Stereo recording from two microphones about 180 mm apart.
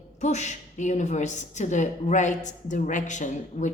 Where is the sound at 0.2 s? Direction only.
40° left (ahead or behind).